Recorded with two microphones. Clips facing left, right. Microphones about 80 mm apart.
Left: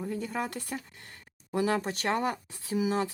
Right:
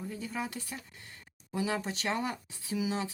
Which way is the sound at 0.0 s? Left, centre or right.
Left.